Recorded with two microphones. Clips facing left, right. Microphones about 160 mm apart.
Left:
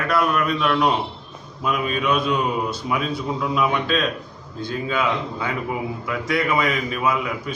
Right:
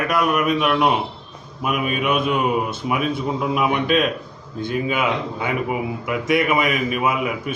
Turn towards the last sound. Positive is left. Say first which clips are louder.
# right 2 dB
turn(degrees=-20)  # may be behind; listen again after turning